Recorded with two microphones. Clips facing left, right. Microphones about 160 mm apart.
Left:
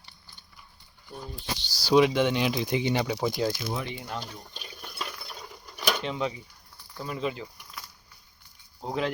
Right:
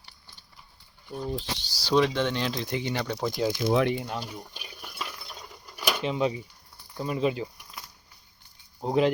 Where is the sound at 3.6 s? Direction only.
70° right (ahead or behind).